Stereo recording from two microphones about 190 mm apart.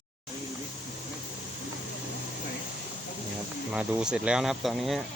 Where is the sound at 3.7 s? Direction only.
5° right (ahead or behind).